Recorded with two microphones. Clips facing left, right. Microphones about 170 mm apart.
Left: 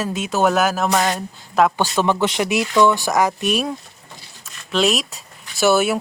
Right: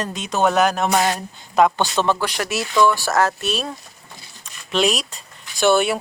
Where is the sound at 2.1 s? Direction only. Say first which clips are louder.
Left 5 dB; 20° left (ahead or behind).